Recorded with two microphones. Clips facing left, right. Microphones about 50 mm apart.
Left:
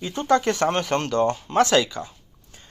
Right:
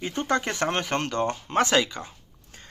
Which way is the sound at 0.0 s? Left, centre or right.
Right.